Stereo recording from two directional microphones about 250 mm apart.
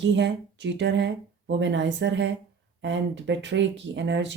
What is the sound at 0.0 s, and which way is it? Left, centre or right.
Speech, right.